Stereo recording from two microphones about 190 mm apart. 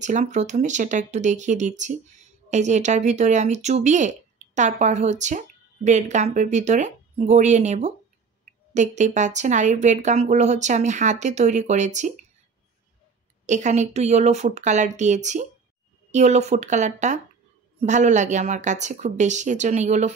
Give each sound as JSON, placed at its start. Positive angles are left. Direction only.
{"t": 0.0, "sound": "speech", "side_deg": -40}
{"t": 13.5, "sound": "speech", "side_deg": -40}